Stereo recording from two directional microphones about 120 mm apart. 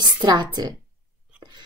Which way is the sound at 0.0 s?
35° right (ahead or behind).